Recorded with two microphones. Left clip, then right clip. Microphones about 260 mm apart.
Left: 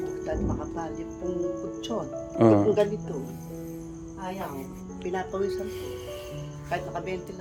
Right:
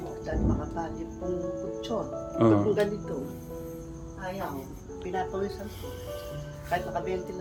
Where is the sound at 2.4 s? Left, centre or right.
Centre.